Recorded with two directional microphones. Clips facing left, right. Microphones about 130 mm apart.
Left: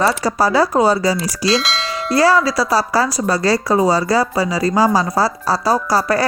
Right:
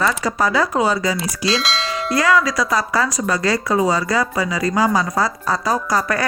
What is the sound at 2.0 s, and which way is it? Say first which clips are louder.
Speech: left 4 dB; 30° left (ahead or behind).